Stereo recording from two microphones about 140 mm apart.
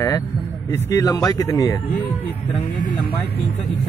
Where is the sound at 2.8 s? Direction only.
75° left (ahead or behind).